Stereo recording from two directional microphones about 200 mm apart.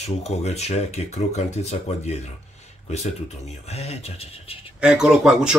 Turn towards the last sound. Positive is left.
turn(degrees=-5)  # may be behind; listen again after turning